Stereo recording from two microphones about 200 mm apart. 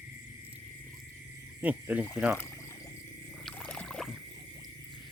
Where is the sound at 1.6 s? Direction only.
10° right (ahead or behind).